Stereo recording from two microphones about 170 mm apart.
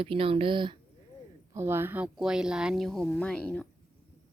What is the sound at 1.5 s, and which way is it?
Speech, 15° right (ahead or behind).